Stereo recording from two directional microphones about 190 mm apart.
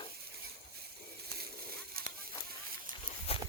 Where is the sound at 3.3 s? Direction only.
30° left (ahead or behind).